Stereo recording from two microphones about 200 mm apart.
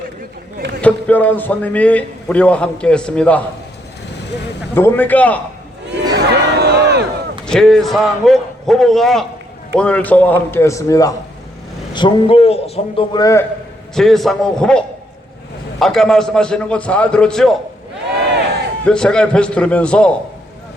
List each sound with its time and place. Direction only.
0.8 s a man's voice: 5° left (ahead or behind)
4.7 s a man's voice: 10° left (ahead or behind)
6.1 s music: 55° right (ahead or behind)
7.4 s a man's voice: centre (ahead or behind); by 13.1 s 30° left (ahead or behind)
13.1 s a man's voice: 15° left (ahead or behind)
13.9 s a man's voice: centre (ahead or behind)
18.9 s a man's voice: 5° left (ahead or behind)